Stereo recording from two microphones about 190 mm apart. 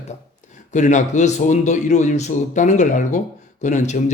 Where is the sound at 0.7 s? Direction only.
40° left (ahead or behind).